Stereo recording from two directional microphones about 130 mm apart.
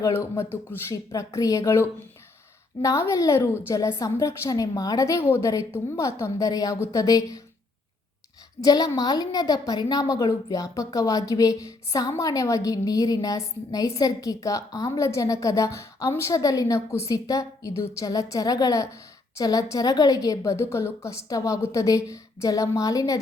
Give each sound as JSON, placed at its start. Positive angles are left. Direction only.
{"t": 0.0, "sound": "a woman's voice", "side_deg": 20}
{"t": 8.6, "sound": "a woman's voice", "side_deg": 30}